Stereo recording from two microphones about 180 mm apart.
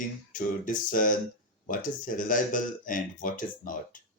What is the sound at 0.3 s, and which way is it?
Speech, 50° left (ahead or behind).